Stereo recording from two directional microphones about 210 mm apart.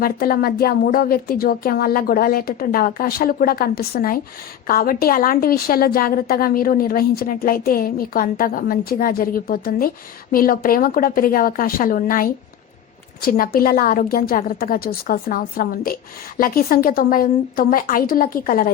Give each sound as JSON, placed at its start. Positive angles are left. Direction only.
{"t": 0.0, "sound": "a woman's voice", "side_deg": 45}